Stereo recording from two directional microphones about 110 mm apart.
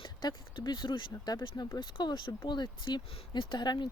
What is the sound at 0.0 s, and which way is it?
Speech, 45° left (ahead or behind).